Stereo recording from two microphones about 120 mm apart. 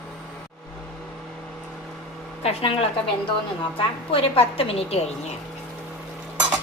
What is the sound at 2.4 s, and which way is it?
Speech, 50° left (ahead or behind).